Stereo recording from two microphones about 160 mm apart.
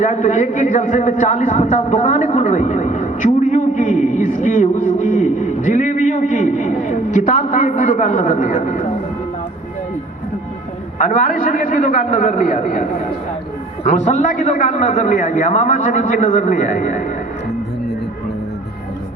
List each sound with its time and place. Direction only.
0.0 s a man's voice: 50° left (ahead or behind)
10.9 s a man's voice: 50° left (ahead or behind)
13.8 s a man's voice: 45° left (ahead or behind)